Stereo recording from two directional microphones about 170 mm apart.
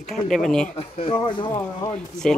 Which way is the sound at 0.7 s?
30° left (ahead or behind).